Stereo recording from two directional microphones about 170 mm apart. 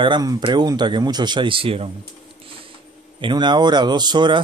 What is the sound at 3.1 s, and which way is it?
Speech, 25° right (ahead or behind).